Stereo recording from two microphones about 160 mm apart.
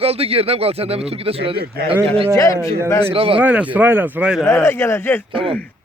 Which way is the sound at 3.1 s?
35° right (ahead or behind).